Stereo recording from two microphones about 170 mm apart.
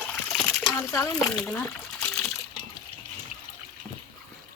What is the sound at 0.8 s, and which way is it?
Speech, 15° left (ahead or behind).